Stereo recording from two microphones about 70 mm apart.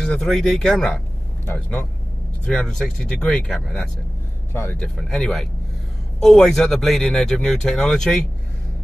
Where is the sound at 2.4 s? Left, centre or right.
Centre.